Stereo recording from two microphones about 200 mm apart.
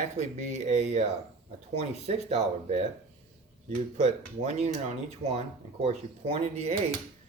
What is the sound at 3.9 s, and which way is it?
Speech, 35° right (ahead or behind).